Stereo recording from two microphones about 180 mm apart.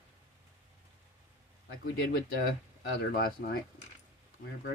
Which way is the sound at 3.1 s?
60° left (ahead or behind).